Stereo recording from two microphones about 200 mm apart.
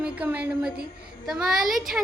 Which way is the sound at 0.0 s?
5° right (ahead or behind).